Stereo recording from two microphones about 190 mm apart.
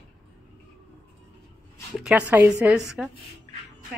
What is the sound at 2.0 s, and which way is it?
A woman's voice, 5° right (ahead or behind).